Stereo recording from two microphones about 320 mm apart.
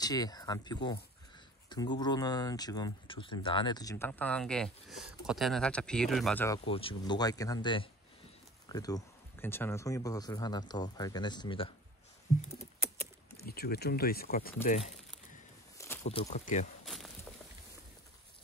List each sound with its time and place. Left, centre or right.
0.0 s speech: centre
13.4 s speech: left
16.0 s speech: centre
16.8 s walk: centre